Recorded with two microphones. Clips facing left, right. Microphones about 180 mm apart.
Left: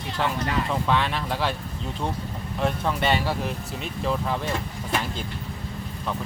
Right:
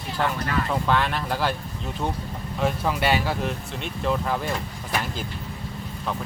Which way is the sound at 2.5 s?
5° right (ahead or behind).